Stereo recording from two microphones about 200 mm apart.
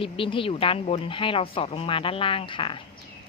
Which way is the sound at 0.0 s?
25° left (ahead or behind).